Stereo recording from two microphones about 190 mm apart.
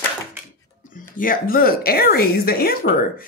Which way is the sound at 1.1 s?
50° left (ahead or behind).